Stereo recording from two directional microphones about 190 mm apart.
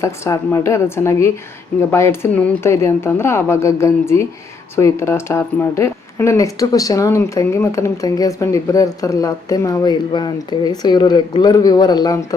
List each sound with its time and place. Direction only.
0.0 s speech: 15° left (ahead or behind)